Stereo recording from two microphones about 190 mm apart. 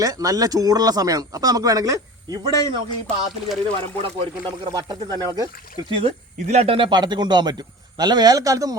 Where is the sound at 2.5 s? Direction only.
20° left (ahead or behind).